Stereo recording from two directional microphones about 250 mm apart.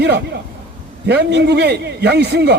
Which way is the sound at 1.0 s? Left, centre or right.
Right.